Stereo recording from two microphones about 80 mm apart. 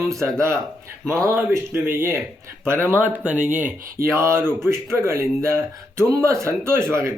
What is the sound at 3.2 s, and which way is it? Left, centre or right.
Speech, centre.